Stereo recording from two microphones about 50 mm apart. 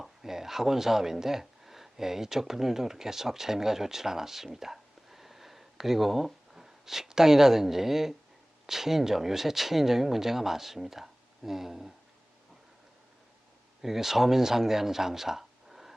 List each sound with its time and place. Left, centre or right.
0.0 s speech: centre
13.8 s speech: centre